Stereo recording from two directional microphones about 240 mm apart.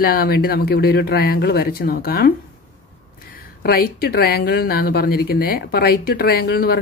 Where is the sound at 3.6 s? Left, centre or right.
Left.